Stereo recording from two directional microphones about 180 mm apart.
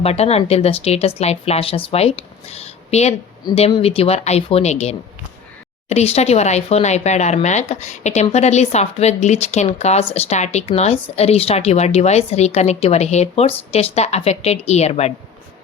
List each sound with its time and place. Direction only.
0.0 s speech: 35° left (ahead or behind)